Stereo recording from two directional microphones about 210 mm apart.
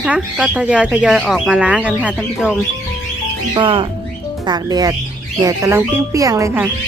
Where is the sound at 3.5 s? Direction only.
25° right (ahead or behind).